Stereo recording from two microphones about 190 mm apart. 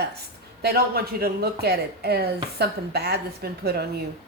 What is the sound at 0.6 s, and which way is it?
Speech, 55° right (ahead or behind).